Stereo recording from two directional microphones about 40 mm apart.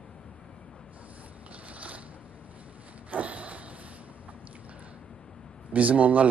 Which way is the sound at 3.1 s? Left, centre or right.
Right.